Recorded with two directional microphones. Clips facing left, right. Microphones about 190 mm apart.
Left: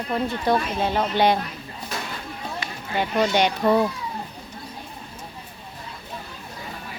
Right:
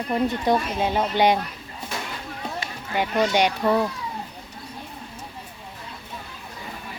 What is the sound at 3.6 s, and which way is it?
Speech, 10° left (ahead or behind).